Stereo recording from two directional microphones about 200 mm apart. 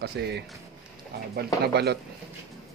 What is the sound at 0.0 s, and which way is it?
Speech, 55° right (ahead or behind).